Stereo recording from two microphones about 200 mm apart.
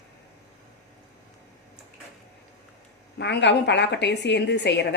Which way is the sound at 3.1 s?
60° left (ahead or behind).